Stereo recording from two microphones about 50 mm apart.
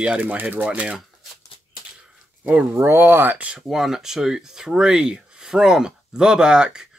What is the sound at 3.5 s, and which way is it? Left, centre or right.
Speech, centre.